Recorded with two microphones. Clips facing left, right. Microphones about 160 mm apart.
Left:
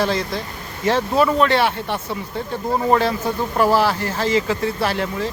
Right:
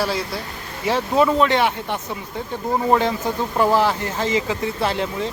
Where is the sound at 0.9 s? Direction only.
15° right (ahead or behind).